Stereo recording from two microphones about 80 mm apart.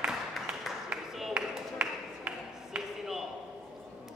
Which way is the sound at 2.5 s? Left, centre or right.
Centre.